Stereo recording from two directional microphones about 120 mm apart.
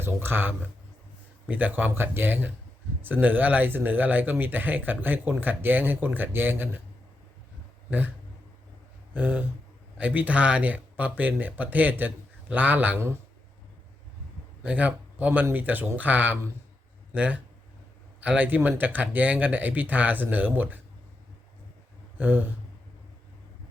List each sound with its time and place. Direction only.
0.0 s speech: 20° right (ahead or behind)
7.9 s a sound: 15° right (ahead or behind)
9.1 s speech: 15° right (ahead or behind)
14.6 s speech: 10° right (ahead or behind)
22.2 s speech: 15° right (ahead or behind)